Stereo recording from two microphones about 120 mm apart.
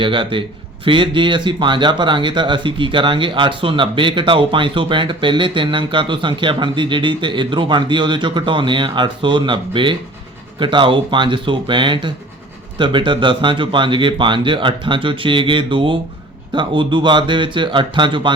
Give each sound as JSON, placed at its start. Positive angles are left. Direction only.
{"t": 0.0, "sound": "speech", "side_deg": -45}